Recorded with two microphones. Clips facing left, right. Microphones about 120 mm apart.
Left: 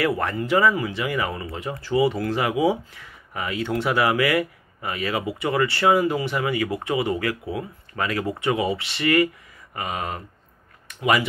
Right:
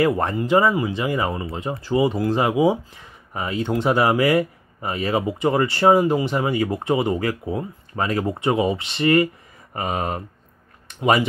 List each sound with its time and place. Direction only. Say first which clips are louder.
0.2 s speech: right 2 dB; 25° right (ahead or behind)
4.0 s speech: right 2 dB; 35° right (ahead or behind)